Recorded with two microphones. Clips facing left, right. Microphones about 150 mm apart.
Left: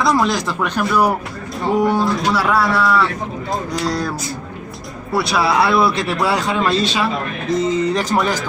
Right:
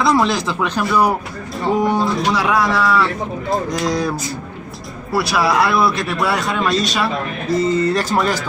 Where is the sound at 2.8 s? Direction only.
Centre (ahead or behind).